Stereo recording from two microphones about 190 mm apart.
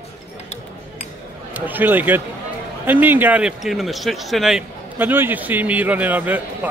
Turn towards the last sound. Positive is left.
turn(degrees=-10)  # may be behind; listen again after turning